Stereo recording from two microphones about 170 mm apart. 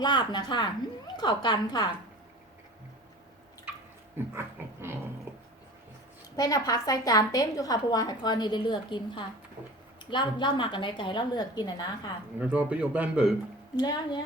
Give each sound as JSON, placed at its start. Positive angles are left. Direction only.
{"t": 0.0, "sound": "a woman's voice", "side_deg": 25}
{"t": 4.4, "sound": "a sound", "side_deg": -15}
{"t": 6.3, "sound": "a woman's voice", "side_deg": 20}
{"t": 12.4, "sound": "a man's voice", "side_deg": -10}
{"t": 13.7, "sound": "a woman's voice", "side_deg": 25}